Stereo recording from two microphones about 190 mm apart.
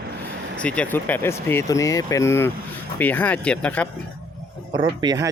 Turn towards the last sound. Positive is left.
turn(degrees=-20)  # may be behind; listen again after turning